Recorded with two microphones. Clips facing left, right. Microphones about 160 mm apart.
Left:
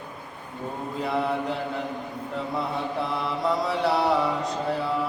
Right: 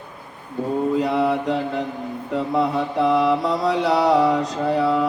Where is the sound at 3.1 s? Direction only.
90° right.